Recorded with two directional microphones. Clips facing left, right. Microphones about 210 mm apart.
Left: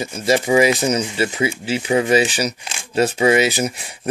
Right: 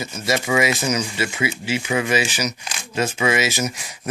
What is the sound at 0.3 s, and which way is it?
Speech, 30° left (ahead or behind).